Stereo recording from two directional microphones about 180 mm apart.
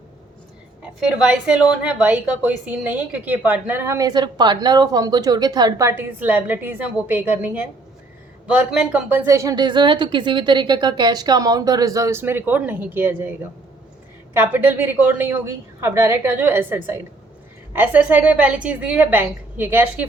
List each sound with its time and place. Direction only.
0.8 s a woman's voice: 5° right (ahead or behind)